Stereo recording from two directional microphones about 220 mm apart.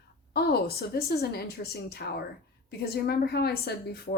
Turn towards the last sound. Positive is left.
turn(degrees=45)  # may be behind; listen again after turning